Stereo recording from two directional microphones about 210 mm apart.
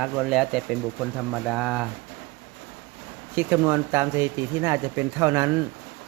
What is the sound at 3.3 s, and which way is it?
Speech, 10° right (ahead or behind).